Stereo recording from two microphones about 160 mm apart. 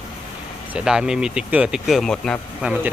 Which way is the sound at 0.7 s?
5° right (ahead or behind).